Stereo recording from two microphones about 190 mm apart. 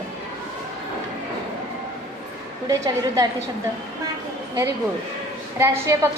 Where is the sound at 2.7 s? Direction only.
20° right (ahead or behind).